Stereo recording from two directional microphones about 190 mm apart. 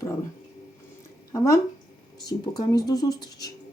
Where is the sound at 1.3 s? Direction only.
15° left (ahead or behind).